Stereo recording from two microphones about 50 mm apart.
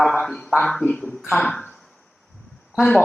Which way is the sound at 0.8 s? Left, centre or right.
Centre.